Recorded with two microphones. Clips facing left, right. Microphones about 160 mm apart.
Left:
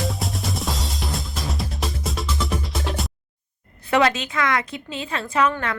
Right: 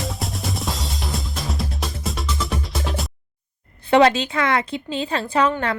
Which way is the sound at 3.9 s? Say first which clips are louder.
Right 5 dB; 30° right (ahead or behind).